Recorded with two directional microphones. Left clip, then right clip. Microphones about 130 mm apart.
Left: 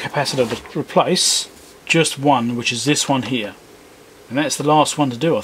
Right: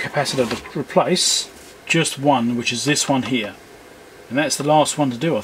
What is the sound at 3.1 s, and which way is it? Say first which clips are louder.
Speech: left 1 dB; 30° left (ahead or behind).